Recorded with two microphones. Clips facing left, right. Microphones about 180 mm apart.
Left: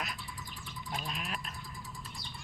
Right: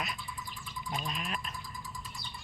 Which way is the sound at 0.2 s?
70° left (ahead or behind).